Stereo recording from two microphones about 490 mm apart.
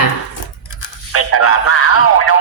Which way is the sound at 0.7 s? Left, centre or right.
Left.